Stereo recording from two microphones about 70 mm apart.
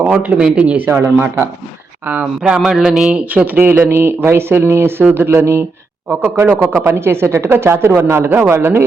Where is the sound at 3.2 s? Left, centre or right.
Right.